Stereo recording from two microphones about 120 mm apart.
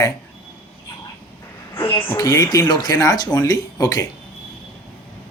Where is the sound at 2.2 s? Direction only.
30° left (ahead or behind).